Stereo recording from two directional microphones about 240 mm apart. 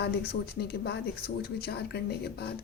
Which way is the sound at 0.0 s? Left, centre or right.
Left.